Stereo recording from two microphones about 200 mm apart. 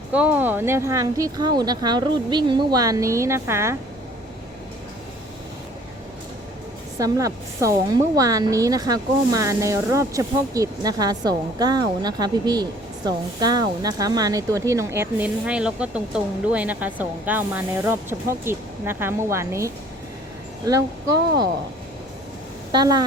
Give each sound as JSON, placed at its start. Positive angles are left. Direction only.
{"t": 0.1, "sound": "speech", "side_deg": -10}
{"t": 7.0, "sound": "speech", "side_deg": -15}
{"t": 22.7, "sound": "speech", "side_deg": -20}